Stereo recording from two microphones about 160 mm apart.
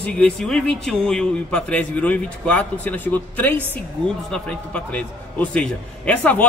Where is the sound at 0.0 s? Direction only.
5° left (ahead or behind).